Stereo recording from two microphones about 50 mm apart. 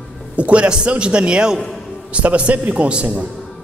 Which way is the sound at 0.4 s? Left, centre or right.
Right.